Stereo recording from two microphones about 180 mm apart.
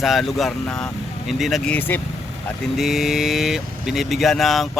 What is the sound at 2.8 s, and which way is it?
Speech, centre (ahead or behind).